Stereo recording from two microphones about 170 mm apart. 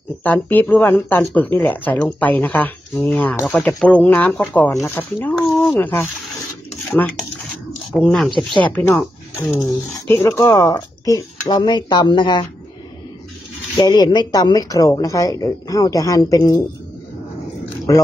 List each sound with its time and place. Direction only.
0.2 s speech: 10° left (ahead or behind)
5.8 s speech: 10° left (ahead or behind)
7.9 s speech: 5° left (ahead or behind); by 12.4 s 25° left (ahead or behind)
13.7 s speech: 20° left (ahead or behind)